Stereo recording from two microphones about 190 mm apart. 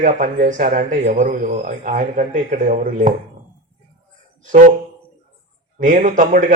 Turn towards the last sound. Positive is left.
turn(degrees=-40)  # may be behind; listen again after turning